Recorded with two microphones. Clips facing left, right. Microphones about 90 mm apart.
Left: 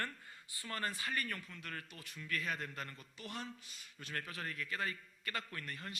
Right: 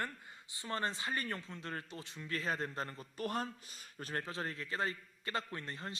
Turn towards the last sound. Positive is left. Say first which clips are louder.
# right 3 dB
turn(degrees=-25)  # may be behind; listen again after turning